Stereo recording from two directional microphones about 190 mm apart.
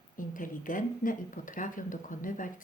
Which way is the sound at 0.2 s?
45° left (ahead or behind).